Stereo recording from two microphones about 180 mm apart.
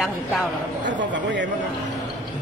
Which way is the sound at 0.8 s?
85° right.